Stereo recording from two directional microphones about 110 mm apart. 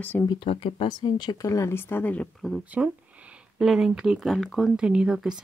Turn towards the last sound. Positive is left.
turn(degrees=-5)  # may be behind; listen again after turning